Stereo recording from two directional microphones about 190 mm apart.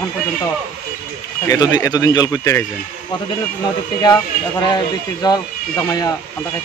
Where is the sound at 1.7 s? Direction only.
20° left (ahead or behind).